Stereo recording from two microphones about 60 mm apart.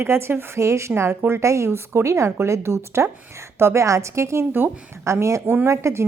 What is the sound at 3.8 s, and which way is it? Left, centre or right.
Speech, right.